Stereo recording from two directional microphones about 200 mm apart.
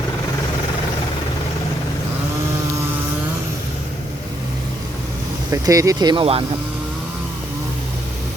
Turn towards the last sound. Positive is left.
turn(degrees=-25)  # may be behind; listen again after turning